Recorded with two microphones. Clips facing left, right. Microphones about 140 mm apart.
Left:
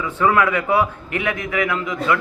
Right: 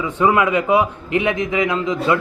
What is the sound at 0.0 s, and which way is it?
Speech, 20° right (ahead or behind).